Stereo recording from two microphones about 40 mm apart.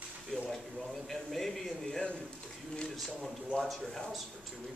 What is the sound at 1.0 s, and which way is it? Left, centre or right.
Speech, centre.